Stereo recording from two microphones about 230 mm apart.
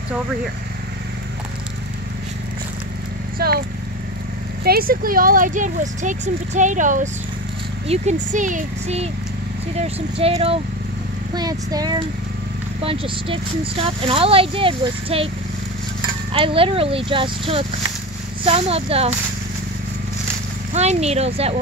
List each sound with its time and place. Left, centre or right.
3.3 s speech: right
4.6 s speech: right
16.3 s speech: right
20.7 s speech: right